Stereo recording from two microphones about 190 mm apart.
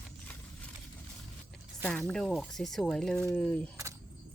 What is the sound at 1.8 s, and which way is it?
Speech, 5° left (ahead or behind).